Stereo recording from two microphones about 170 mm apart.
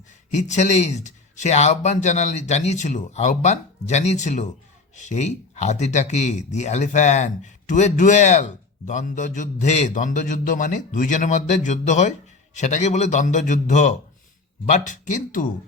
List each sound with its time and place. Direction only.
0.4 s speech: 45° left (ahead or behind)